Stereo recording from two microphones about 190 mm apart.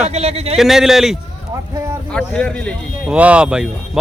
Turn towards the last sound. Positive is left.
turn(degrees=-5)  # may be behind; listen again after turning